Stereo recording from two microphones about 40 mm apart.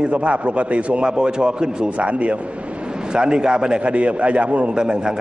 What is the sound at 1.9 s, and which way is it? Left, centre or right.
Speech, right.